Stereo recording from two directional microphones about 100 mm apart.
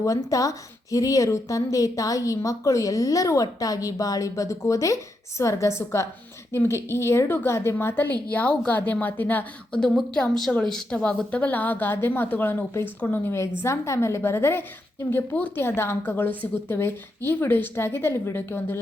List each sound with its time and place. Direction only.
0.0 s a woman's voice: 35° left (ahead or behind); by 9.5 s 15° left (ahead or behind)
9.7 s a woman's voice: 5° left (ahead or behind); by 18.8 s 25° left (ahead or behind)